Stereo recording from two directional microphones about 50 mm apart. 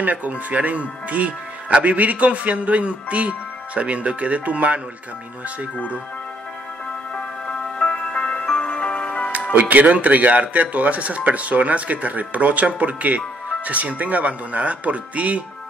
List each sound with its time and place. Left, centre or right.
0.0 s speech: right
7.4 s music: centre
9.5 s speech: right